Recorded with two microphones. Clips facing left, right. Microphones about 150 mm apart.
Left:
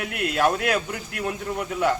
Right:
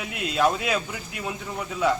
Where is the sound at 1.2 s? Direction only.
Centre (ahead or behind).